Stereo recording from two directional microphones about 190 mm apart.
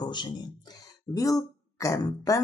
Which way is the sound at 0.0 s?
25° left (ahead or behind).